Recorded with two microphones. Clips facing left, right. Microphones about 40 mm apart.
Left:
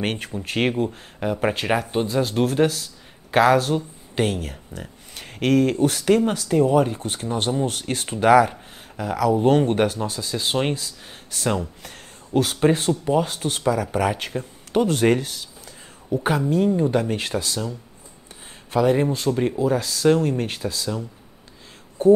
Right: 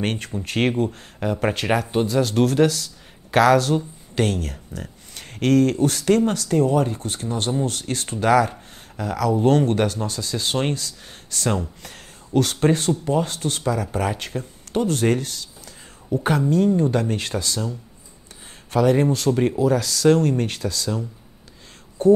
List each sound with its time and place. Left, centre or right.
0.0 s speech: centre
1.7 s speech: centre
12.8 s speech: left
18.7 s speech: centre
19.3 s speech: centre
19.6 s speech: centre